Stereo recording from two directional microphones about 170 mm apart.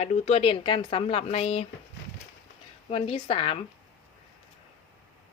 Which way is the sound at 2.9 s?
30° left (ahead or behind).